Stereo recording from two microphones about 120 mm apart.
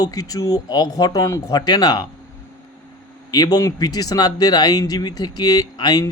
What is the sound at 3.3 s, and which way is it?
Speech, 35° left (ahead or behind).